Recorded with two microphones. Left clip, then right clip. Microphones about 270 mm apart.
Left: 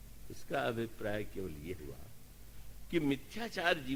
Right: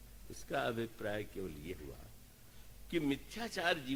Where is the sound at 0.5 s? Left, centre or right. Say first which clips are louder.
Left 1 dB; right.